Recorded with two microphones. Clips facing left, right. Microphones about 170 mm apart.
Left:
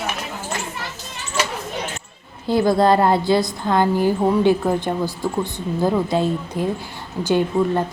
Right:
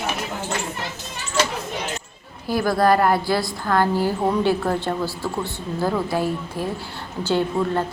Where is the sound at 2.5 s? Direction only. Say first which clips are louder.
Left 3 dB; 25° left (ahead or behind).